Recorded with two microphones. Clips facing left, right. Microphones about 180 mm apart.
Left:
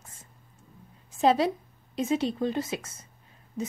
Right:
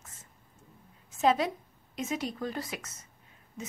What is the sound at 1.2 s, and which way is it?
Speech, 30° left (ahead or behind).